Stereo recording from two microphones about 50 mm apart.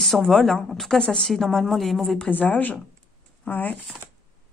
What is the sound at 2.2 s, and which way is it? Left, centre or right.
Speech, left.